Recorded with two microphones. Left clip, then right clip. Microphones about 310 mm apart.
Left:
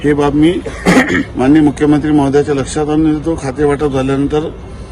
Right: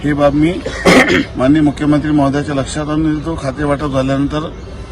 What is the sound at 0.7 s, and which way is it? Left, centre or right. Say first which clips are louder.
Speech: right 2 dB; right.